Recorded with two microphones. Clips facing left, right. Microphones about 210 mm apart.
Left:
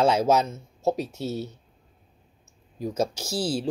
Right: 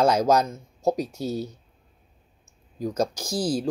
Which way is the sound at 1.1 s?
25° left (ahead or behind).